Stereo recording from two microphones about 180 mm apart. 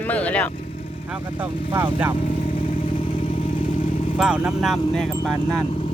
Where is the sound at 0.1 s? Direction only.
10° left (ahead or behind).